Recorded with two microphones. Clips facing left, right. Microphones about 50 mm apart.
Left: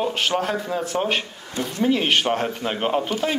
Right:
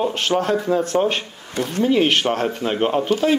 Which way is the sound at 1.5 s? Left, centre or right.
Right.